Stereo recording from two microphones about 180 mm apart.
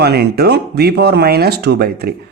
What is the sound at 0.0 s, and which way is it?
Speech, 65° right (ahead or behind).